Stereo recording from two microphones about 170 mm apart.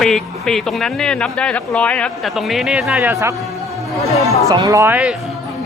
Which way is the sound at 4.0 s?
40° left (ahead or behind).